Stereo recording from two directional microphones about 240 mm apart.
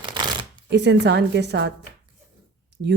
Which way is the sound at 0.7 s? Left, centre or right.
Right.